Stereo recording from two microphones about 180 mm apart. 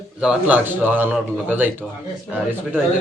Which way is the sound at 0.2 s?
5° right (ahead or behind).